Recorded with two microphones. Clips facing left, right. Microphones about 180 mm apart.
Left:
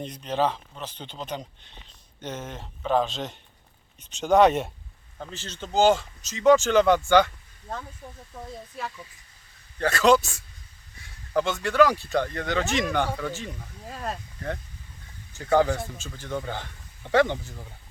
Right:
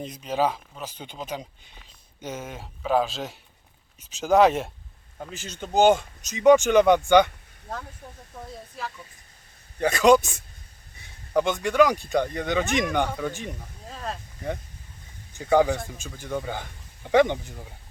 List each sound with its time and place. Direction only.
0.0 s speech: 5° right (ahead or behind)
9.7 s speech: 15° right (ahead or behind)
13.8 s speech: 5° left (ahead or behind)
15.3 s speech: 15° right (ahead or behind)